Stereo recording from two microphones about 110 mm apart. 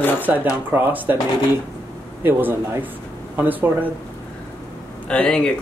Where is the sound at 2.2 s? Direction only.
15° right (ahead or behind).